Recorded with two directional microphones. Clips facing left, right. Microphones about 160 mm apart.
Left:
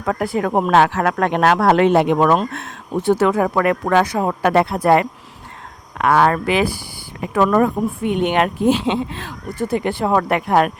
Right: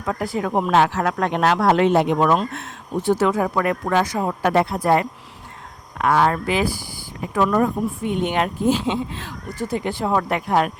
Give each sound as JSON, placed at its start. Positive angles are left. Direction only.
{"t": 0.0, "sound": "speech", "side_deg": 60}